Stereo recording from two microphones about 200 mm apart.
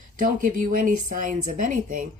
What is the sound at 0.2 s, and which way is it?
Speech, 40° right (ahead or behind).